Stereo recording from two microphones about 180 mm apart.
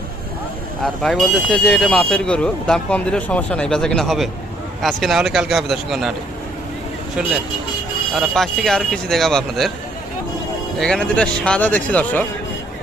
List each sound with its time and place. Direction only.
1.0 s speech: 5° left (ahead or behind)
7.2 s speech: 5° right (ahead or behind)
10.8 s speech: 5° left (ahead or behind)